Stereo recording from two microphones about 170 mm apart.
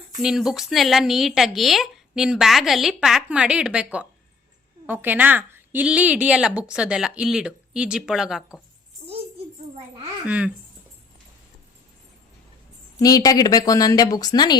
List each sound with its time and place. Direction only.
0.2 s a woman's voice: 5° right (ahead or behind)
10.2 s speech: 5° right (ahead or behind)
13.0 s speech: 20° left (ahead or behind)